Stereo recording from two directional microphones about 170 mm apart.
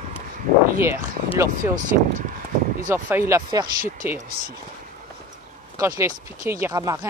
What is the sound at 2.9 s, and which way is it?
Speech, 15° right (ahead or behind).